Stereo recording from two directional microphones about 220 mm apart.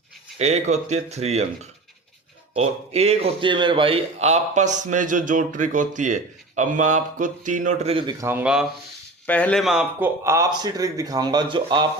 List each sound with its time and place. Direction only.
0.3 s speech: 30° right (ahead or behind)
2.6 s a man's voice: 30° right (ahead or behind)
8.3 s speech: 5° right (ahead or behind)
9.2 s speech: 5° left (ahead or behind); by 11.9 s 20° right (ahead or behind)